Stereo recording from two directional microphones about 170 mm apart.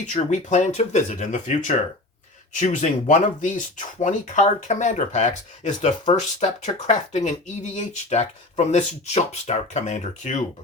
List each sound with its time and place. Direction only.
0.0 s speech: 45° left (ahead or behind)